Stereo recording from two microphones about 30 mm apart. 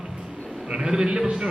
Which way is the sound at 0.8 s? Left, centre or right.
Right.